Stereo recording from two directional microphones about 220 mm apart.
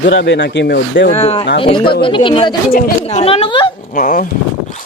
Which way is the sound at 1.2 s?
25° left (ahead or behind).